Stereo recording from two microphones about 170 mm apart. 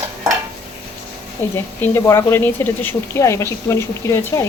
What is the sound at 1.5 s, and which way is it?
Speech, 15° left (ahead or behind).